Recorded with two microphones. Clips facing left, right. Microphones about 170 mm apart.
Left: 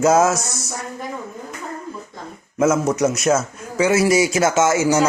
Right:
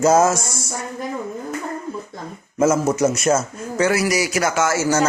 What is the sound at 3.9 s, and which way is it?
Speech, 25° left (ahead or behind).